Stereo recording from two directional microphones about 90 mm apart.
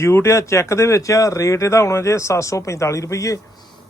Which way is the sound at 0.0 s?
30° left (ahead or behind).